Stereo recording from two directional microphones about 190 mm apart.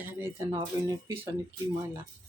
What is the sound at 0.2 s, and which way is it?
Speech, 15° right (ahead or behind).